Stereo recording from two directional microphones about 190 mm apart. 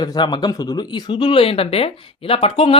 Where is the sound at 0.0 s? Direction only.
20° left (ahead or behind).